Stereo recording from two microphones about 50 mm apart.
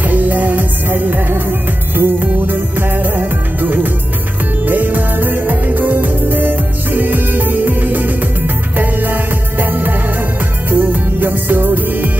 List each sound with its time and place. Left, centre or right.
0.1 s music: right
2.0 s music of bollywood: right
4.6 s music: right